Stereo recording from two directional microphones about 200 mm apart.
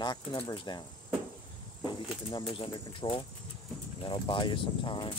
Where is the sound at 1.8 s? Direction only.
20° left (ahead or behind).